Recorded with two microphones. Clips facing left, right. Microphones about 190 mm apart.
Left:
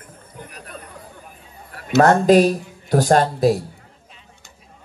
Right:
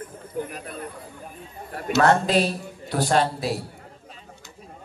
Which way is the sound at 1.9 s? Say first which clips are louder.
Left 7 dB; 45° left (ahead or behind).